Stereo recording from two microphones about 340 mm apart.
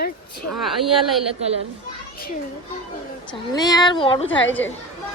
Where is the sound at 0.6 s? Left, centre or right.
Centre.